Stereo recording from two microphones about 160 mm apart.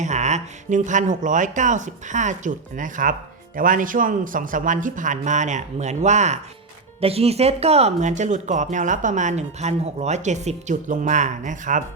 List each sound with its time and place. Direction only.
0.0 s speech: 45° right (ahead or behind)